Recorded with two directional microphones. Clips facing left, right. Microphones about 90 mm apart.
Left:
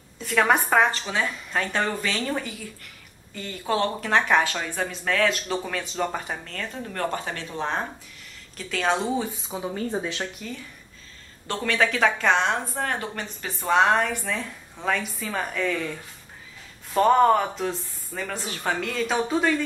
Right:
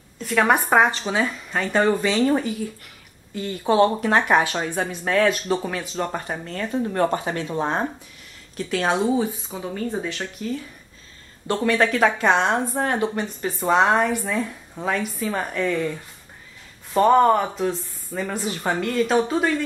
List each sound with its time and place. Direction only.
0.2 s a woman's voice: centre (ahead or behind)
1.9 s speech: 20° right (ahead or behind)
3.6 s speech: 20° right (ahead or behind); by 6.4 s 5° right (ahead or behind)
6.4 s speech: 15° right (ahead or behind)
7.5 s speech: 15° right (ahead or behind)
9.5 s speech: 15° left (ahead or behind)
11.4 s speech: 10° right (ahead or behind)